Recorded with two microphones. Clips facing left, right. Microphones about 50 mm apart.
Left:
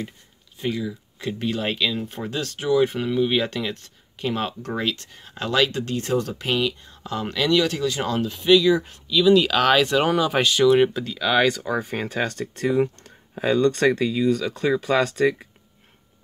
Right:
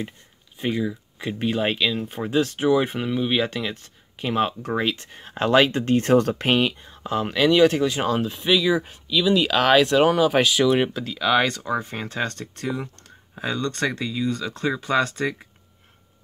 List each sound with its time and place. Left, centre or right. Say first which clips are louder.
0.6 s speech: right 2 dB; right
5.1 s speech: right 8 dB; right
6.8 s speech: right 3 dB; centre